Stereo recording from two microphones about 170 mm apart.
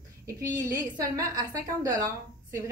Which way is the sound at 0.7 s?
20° right (ahead or behind).